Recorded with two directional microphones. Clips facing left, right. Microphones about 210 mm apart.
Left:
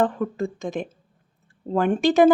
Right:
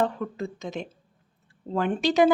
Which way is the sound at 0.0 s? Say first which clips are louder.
Left 4 dB; 50° left (ahead or behind).